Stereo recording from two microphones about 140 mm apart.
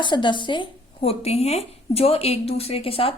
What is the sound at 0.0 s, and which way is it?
Speech, 35° left (ahead or behind).